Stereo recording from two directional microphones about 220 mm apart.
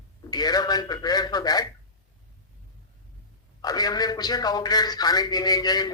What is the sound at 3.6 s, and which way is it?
A man's voice, 15° left (ahead or behind).